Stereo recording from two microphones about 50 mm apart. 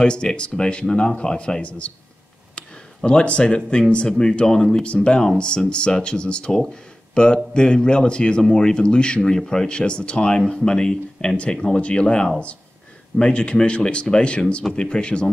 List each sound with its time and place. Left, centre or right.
0.0 s speech: centre
3.0 s speech: centre
4.8 s speech: centre